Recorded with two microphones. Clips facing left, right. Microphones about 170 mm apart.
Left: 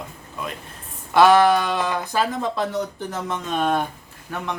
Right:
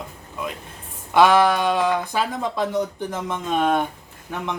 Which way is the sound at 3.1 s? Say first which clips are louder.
Right 1 dB; 15° right (ahead or behind).